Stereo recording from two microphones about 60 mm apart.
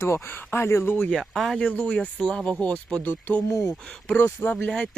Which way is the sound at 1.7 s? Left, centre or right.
Centre.